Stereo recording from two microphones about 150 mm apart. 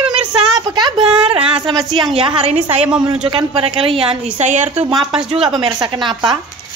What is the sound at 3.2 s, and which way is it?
Speech, 40° right (ahead or behind).